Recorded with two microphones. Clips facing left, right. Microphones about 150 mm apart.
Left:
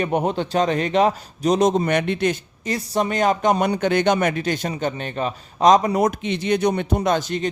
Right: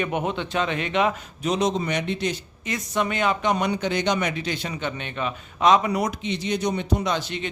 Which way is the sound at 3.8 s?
55° left (ahead or behind).